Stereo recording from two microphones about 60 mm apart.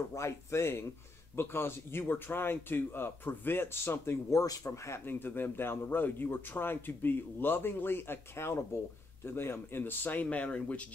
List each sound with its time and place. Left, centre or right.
0.1 s speech: left
4.6 s speech: left
5.0 s speech: left
10.3 s speech: left